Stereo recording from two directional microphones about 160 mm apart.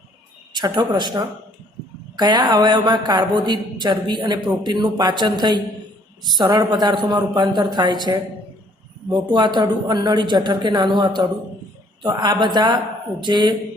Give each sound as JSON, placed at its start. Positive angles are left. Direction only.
{"t": 0.5, "sound": "speech", "side_deg": -25}